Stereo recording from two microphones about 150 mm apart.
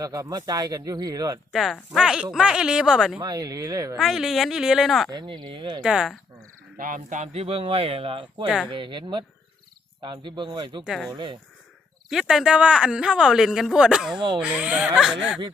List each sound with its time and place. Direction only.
0.0 s speech: 25° right (ahead or behind)
1.5 s speech: centre (ahead or behind)
3.2 s speech: 25° right (ahead or behind)
3.9 s speech: centre (ahead or behind)
5.1 s speech: 30° right (ahead or behind)
5.8 s speech: 5° right (ahead or behind)
6.7 s speech: 65° right (ahead or behind); by 10.8 s 30° right (ahead or behind)
10.8 s speech: centre (ahead or behind)
11.1 s speech: 30° right (ahead or behind)
12.0 s speech: 5° right (ahead or behind)